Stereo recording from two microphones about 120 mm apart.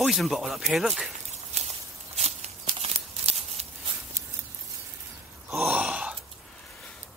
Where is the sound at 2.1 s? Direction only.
65° right (ahead or behind).